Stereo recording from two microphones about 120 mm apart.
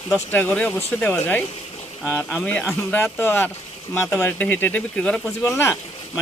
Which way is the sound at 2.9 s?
20° left (ahead or behind).